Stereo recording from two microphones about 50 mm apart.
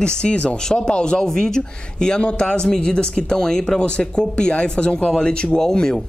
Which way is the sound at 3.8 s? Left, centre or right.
Left.